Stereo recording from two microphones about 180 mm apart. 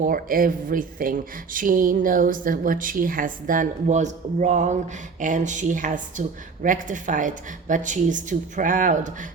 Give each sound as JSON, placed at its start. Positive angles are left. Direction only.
{"t": 0.0, "sound": "speech", "side_deg": -50}